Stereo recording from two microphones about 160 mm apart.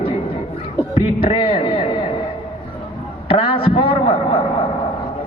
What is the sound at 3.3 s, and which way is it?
A man's voice, 35° left (ahead or behind).